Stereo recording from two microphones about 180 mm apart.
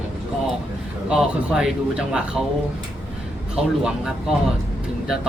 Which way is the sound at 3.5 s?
5° right (ahead or behind).